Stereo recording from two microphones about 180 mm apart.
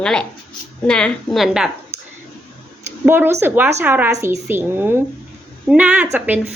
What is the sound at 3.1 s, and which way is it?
A woman's voice, 15° right (ahead or behind).